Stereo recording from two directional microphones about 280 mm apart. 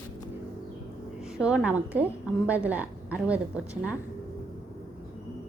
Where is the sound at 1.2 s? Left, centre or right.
Centre.